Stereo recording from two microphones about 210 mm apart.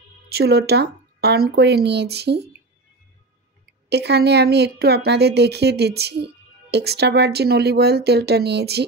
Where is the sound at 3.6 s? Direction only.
50° right (ahead or behind).